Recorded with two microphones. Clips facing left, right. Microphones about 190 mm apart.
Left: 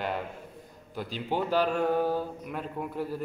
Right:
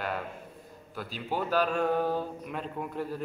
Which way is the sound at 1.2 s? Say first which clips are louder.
Left 1 dB; 15° left (ahead or behind).